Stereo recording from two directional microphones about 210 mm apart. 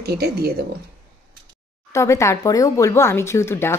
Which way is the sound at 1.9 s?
15° left (ahead or behind).